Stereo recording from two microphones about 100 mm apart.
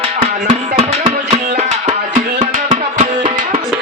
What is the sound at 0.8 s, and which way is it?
Music, 90° right.